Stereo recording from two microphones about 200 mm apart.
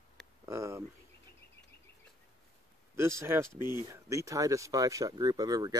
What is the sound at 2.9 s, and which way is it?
Speech, 15° right (ahead or behind).